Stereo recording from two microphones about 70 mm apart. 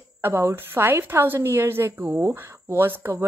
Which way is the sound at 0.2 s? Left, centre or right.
Right.